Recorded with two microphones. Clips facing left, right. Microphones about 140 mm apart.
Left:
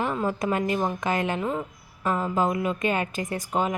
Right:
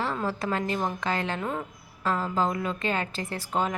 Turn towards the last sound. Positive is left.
turn(degrees=10)  # may be behind; listen again after turning